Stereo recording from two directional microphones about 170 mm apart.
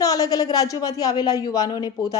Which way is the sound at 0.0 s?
20° left (ahead or behind).